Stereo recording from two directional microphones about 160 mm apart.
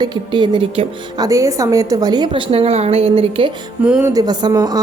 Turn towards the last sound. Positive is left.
turn(degrees=-25)  # may be behind; listen again after turning